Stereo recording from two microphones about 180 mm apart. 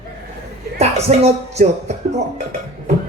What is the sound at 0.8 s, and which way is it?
Speech, 35° right (ahead or behind).